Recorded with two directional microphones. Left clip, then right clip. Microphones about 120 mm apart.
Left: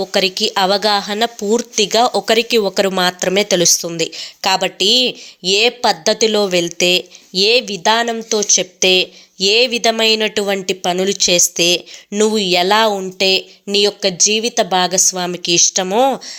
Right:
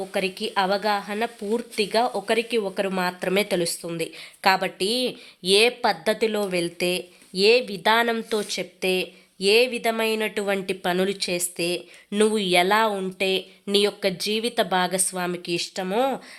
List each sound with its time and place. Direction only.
0.0 s a woman's voice: 35° left (ahead or behind)
3.6 s speech: 45° left (ahead or behind)
3.9 s speech: 30° left (ahead or behind)
7.8 s a woman's voice: 15° left (ahead or behind)
11.2 s a woman's voice: 35° left (ahead or behind)
12.2 s speech: 20° left (ahead or behind)
15.9 s speech: 20° left (ahead or behind)